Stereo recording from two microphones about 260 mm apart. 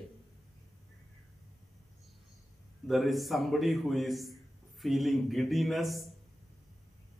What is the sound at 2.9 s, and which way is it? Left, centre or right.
Speech, centre.